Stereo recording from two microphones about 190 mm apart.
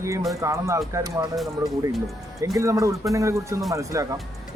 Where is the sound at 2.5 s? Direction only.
15° right (ahead or behind).